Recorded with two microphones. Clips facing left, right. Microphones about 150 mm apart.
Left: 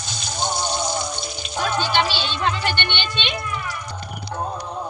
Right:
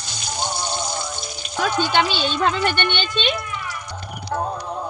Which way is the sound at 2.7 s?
45° right (ahead or behind).